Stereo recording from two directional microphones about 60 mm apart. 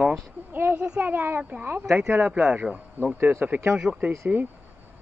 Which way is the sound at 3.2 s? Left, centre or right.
Right.